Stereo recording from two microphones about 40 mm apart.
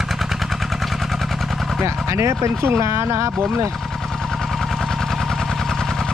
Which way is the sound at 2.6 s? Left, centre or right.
Right.